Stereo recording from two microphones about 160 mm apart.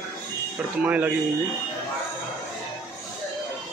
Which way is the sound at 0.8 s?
10° right (ahead or behind).